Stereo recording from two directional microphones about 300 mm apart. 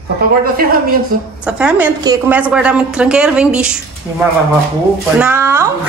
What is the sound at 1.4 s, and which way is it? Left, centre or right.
A woman's voice, centre.